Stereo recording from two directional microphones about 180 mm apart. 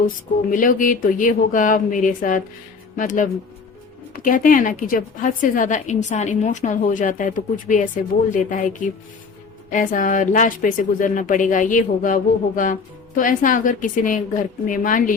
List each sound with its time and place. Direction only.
0.5 s a woman's voice: 50° left (ahead or behind)